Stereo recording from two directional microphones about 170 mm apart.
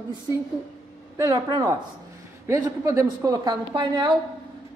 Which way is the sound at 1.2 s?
25° right (ahead or behind).